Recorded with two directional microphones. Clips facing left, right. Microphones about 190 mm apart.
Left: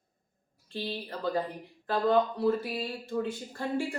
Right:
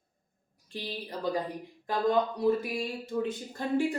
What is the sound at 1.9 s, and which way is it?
Speech, 15° right (ahead or behind).